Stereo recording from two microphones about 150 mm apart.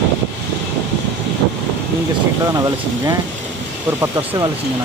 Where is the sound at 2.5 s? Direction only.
25° right (ahead or behind).